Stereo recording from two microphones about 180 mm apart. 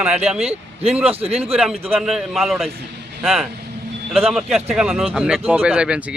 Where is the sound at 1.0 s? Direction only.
35° right (ahead or behind).